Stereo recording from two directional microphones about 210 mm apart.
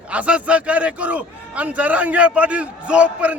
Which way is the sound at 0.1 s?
5° right (ahead or behind).